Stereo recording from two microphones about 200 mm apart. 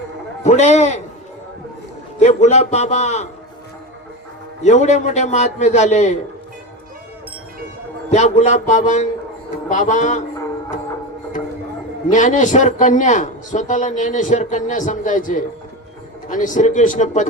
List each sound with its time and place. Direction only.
0.4 s a man's voice: 35° left (ahead or behind)
2.1 s a man's voice: 35° left (ahead or behind)
4.6 s a man's voice: 35° left (ahead or behind)
8.1 s a man's voice: 35° left (ahead or behind)
12.1 s a man's voice: 40° left (ahead or behind)